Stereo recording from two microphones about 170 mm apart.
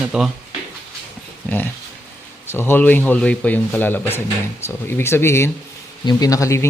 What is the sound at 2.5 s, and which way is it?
Speech, 15° left (ahead or behind).